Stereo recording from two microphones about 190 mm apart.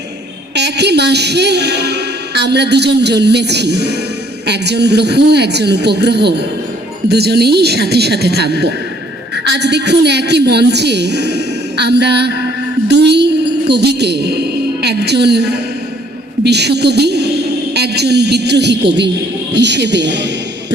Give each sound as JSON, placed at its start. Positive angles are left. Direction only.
{"t": 0.5, "sound": "speech", "side_deg": -60}
{"t": 12.9, "sound": "music", "side_deg": -60}
{"t": 13.7, "sound": "a woman's voice", "side_deg": -60}